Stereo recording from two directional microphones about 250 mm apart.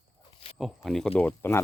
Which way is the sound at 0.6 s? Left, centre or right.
Centre.